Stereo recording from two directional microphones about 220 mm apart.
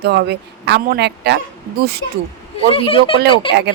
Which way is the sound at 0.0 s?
50° right (ahead or behind).